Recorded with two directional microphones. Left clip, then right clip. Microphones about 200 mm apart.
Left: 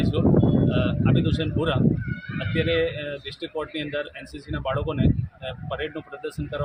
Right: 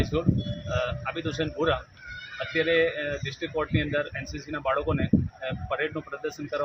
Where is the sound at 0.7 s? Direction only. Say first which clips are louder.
Left 4 dB; centre (ahead or behind).